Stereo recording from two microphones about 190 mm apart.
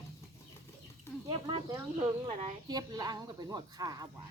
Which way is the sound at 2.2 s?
25° right (ahead or behind).